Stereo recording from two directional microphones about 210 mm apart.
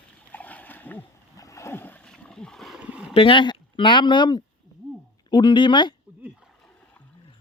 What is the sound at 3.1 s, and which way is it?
Speech, 25° left (ahead or behind).